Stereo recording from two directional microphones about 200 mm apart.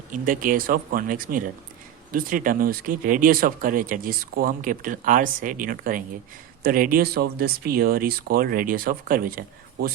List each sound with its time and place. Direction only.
0.1 s speech: 45° right (ahead or behind)